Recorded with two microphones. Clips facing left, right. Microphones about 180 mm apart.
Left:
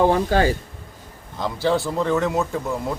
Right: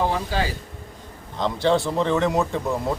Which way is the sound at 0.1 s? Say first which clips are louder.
Left 7 dB; 50° left (ahead or behind).